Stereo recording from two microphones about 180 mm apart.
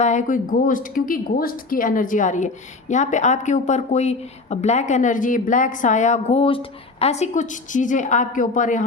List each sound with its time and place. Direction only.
0.0 s speech: 45° left (ahead or behind)